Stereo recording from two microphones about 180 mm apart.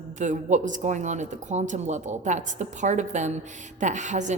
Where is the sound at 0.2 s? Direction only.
45° right (ahead or behind).